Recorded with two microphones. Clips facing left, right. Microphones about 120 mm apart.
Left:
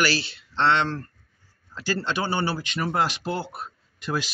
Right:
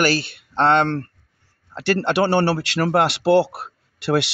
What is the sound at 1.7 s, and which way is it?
Speech, 65° right (ahead or behind).